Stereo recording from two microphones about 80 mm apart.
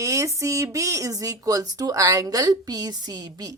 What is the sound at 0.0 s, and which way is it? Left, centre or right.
Speech, right.